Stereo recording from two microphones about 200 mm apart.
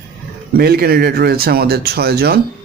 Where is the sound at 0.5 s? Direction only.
50° right (ahead or behind).